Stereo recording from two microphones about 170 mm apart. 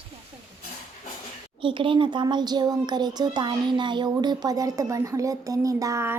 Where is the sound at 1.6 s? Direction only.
30° right (ahead or behind).